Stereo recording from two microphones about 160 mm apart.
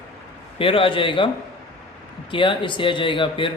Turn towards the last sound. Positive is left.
turn(degrees=30)  # may be behind; listen again after turning